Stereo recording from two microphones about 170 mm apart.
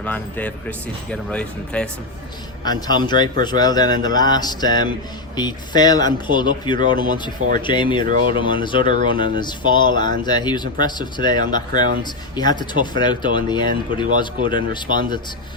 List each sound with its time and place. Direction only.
0.0 s speech: 10° left (ahead or behind)
2.6 s speech: 25° left (ahead or behind)
7.1 s speech: 50° right (ahead or behind)
7.6 s speech: 30° left (ahead or behind)
8.8 s speech: 45° right (ahead or behind)
9.0 s speech: 30° left (ahead or behind)